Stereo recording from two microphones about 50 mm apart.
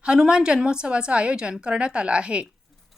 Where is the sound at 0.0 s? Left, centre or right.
Right.